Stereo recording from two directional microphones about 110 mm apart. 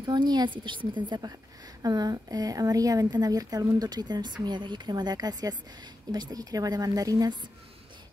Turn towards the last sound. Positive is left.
turn(degrees=-35)  # may be behind; listen again after turning